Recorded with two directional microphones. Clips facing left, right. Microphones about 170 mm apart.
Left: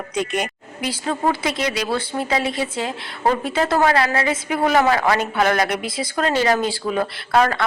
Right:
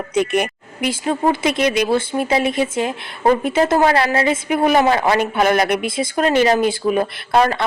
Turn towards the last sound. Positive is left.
turn(degrees=-25)  # may be behind; listen again after turning